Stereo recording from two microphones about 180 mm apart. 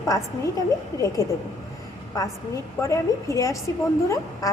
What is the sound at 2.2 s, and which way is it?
A woman's voice, 15° left (ahead or behind).